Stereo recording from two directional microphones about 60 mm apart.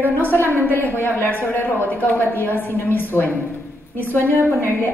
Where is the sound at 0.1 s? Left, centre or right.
Left.